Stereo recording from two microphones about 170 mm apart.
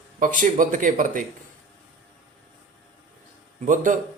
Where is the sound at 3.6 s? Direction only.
50° right (ahead or behind).